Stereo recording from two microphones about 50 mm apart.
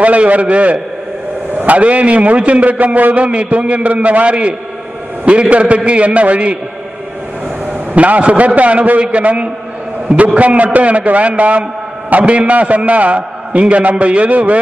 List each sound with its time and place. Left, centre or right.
0.0 s a man's voice: right
7.9 s a man's voice: right